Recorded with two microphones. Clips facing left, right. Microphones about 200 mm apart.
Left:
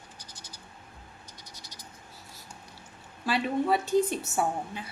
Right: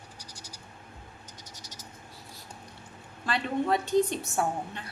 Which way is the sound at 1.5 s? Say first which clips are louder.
Right 1 dB; 45° right (ahead or behind).